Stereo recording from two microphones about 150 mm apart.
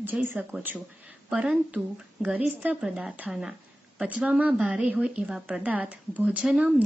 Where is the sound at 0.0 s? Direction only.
15° right (ahead or behind).